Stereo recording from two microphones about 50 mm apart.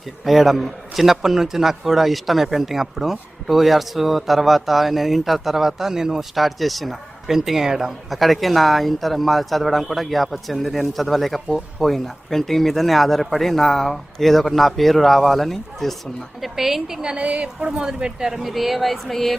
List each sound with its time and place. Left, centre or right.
0.3 s a man's voice: centre